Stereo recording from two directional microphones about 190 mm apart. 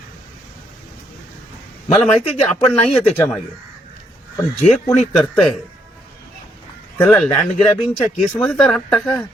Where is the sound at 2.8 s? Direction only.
30° left (ahead or behind).